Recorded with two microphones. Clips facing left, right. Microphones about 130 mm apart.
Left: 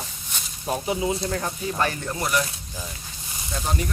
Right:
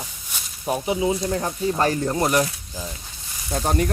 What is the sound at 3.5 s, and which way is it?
Speech, 45° right (ahead or behind).